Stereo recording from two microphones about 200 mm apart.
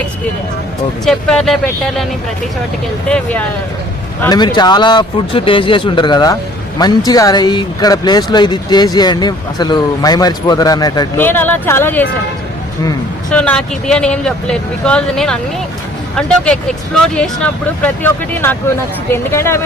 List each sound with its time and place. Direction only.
1.0 s speech: centre (ahead or behind)
3.1 s speech: 5° left (ahead or behind)
4.2 s speech: 20° left (ahead or behind)
13.3 s speech: 5° left (ahead or behind)